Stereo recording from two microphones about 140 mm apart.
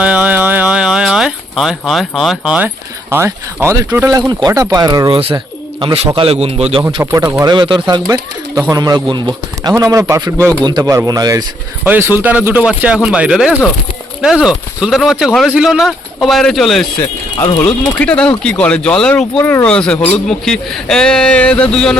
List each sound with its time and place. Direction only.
0.0 s speech: 10° right (ahead or behind); by 5.4 s 35° right (ahead or behind)
6.1 s a man's voice: 45° right (ahead or behind)
7.0 s speech: 20° right (ahead or behind)
7.5 s speech: 35° right (ahead or behind)
11.9 s speech: 15° right (ahead or behind); by 21.9 s 5° left (ahead or behind)